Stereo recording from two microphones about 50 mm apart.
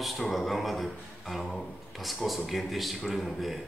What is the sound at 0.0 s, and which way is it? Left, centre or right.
Speech, centre.